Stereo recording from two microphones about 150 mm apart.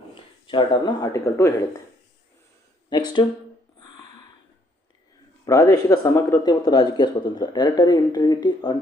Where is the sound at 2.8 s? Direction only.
30° left (ahead or behind).